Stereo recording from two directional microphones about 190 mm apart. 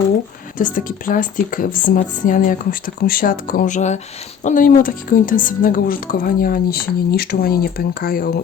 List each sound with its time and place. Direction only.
0.6 s a woman's voice: 45° left (ahead or behind)